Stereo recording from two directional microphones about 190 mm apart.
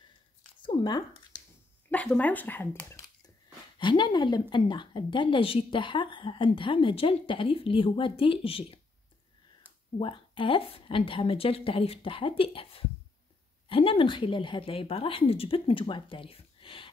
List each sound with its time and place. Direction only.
0.6 s a sound: 25° left (ahead or behind)
1.9 s speech: 10° left (ahead or behind)
3.7 s a woman's voice: 25° left (ahead or behind)
9.9 s a woman's voice: 25° left (ahead or behind)